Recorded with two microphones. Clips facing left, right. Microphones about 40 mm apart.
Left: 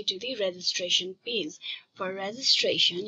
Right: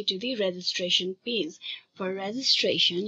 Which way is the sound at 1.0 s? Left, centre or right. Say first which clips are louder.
Right 2 dB; centre.